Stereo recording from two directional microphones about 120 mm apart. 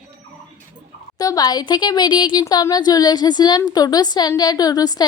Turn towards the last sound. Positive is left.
turn(degrees=30)  # may be behind; listen again after turning